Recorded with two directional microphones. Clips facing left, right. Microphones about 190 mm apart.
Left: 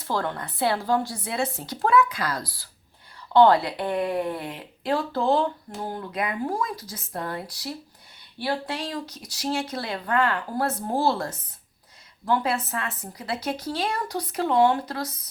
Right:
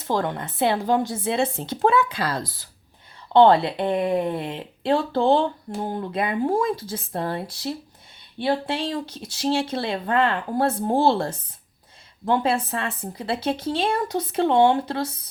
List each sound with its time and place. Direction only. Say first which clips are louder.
0.0 s speech: right 3 dB; 20° right (ahead or behind)